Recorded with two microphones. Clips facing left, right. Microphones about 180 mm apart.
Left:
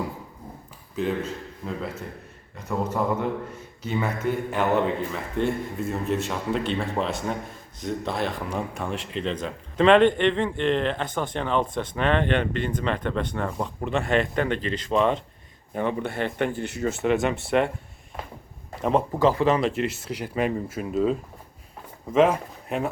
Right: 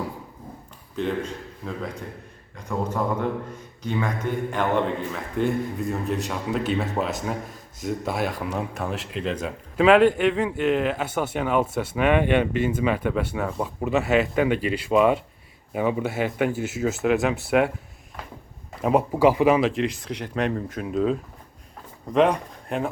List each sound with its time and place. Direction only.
0.9 s a man's voice: 5° left (ahead or behind)
18.8 s speech: 5° right (ahead or behind)